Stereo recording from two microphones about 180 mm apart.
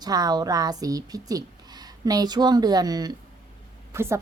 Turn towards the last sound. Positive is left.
turn(degrees=-15)  # may be behind; listen again after turning